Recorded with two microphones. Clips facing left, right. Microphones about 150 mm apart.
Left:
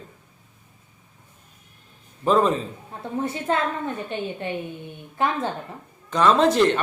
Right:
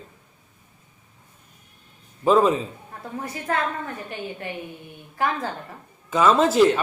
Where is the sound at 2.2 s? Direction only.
5° right (ahead or behind).